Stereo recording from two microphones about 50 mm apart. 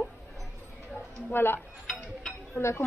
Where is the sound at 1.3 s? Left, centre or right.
Left.